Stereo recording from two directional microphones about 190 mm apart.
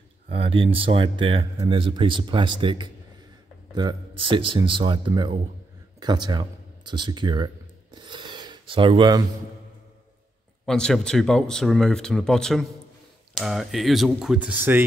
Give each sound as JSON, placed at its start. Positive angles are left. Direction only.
{"t": 0.3, "sound": "speech", "side_deg": -30}
{"t": 10.6, "sound": "speech", "side_deg": 0}